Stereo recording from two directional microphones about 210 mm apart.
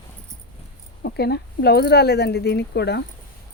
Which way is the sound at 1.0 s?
50° left (ahead or behind).